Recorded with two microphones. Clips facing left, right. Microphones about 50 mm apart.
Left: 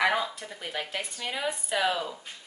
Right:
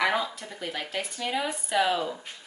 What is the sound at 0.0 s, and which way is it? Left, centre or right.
Speech, centre.